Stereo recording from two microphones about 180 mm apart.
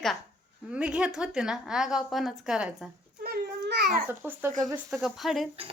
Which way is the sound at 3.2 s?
65° right (ahead or behind).